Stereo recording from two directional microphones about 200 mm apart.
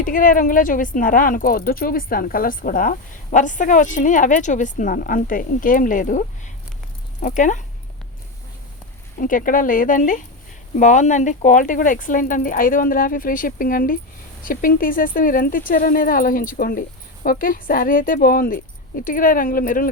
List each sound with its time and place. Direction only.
0.0 s speech: 45° left (ahead or behind)
9.1 s speech: 40° left (ahead or behind)